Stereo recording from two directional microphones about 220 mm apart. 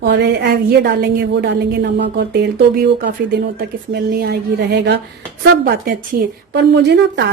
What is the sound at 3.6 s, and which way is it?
A woman's voice, 45° right (ahead or behind).